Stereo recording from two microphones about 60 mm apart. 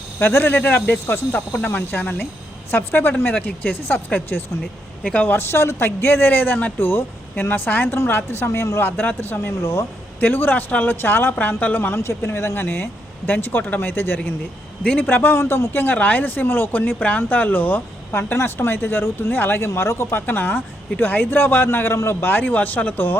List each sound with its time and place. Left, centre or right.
0.2 s speech: left
5.0 s speech: left
5.3 s a woman's voice: left
8.8 s speech: left
10.2 s speech: left
11.9 s speech: left
20.1 s speech: left